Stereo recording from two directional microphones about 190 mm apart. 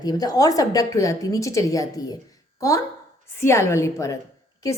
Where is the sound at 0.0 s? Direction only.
20° left (ahead or behind).